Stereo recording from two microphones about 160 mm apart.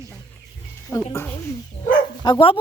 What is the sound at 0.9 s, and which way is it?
Speech, 25° left (ahead or behind).